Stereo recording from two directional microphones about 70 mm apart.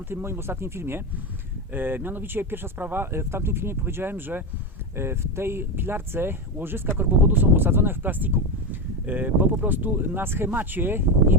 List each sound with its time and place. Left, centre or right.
0.1 s speech: right